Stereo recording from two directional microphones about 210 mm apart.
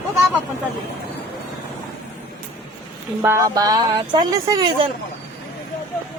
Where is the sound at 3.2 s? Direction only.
15° right (ahead or behind).